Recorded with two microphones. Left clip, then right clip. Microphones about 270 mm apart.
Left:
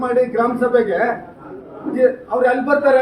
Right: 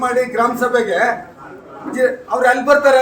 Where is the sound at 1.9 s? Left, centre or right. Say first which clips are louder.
Even; right.